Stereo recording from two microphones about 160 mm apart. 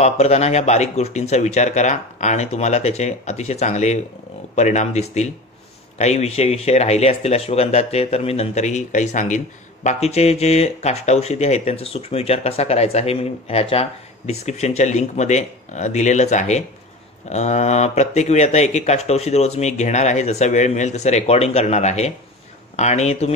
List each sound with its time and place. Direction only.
0.0 s speech: 40° left (ahead or behind)